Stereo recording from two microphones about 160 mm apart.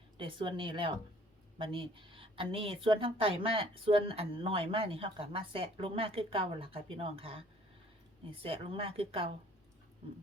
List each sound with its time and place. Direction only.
0.2 s a woman's voice: 30° right (ahead or behind)